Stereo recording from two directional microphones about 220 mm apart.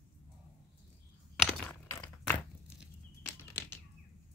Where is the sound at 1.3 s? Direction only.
5° left (ahead or behind).